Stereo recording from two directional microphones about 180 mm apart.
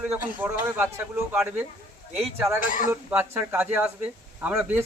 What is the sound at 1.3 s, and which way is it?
Speech, 10° right (ahead or behind).